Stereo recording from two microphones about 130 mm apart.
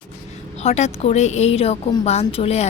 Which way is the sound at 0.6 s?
60° left (ahead or behind).